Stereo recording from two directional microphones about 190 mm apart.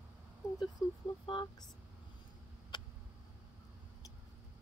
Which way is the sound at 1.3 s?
25° left (ahead or behind).